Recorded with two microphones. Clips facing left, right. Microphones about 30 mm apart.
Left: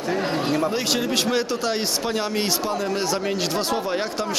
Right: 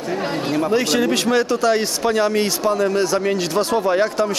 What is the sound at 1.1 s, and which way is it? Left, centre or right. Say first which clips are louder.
Speech: right 4 dB; centre.